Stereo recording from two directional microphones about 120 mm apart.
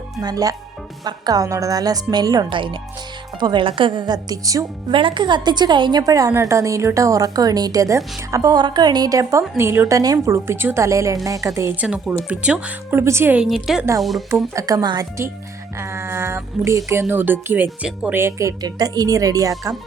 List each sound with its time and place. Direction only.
0.2 s a woman's voice: 30° right (ahead or behind)
4.9 s a woman's voice: 45° right (ahead or behind); by 11.7 s 25° right (ahead or behind)
11.8 s speech: 10° right (ahead or behind)
13.4 s a woman's voice: 5° right (ahead or behind)
14.5 s a woman's voice: 30° right (ahead or behind)
15.8 s a woman's voice: 20° right (ahead or behind)
18.2 s a woman's voice: 25° right (ahead or behind)